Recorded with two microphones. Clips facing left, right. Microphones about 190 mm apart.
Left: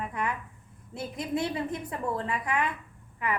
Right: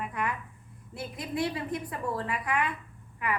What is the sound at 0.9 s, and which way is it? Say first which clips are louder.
A woman's voice: left 2 dB; 25° left (ahead or behind).